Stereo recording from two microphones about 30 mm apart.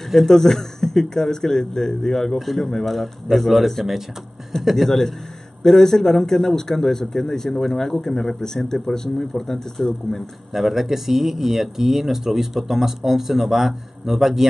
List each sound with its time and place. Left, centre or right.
0.3 s a man's voice: centre
2.3 s a man's voice: centre
4.7 s a man's voice: centre
10.5 s speech: centre